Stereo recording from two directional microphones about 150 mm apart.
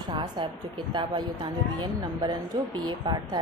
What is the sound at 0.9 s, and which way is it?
A woman's voice, 30° right (ahead or behind).